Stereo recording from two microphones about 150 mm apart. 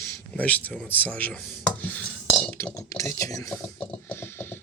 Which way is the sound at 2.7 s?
20° left (ahead or behind).